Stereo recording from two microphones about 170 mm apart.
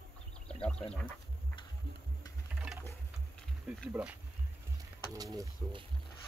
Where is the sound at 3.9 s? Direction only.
5° right (ahead or behind).